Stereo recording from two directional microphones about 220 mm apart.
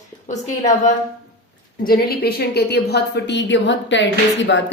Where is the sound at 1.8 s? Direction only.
45° left (ahead or behind).